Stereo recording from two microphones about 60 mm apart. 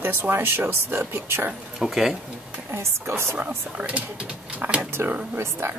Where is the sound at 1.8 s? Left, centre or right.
Centre.